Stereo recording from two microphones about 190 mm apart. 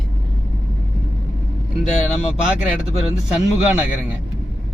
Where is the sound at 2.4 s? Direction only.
5° right (ahead or behind).